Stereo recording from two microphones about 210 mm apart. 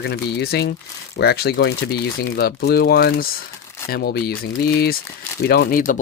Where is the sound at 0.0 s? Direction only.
50° left (ahead or behind).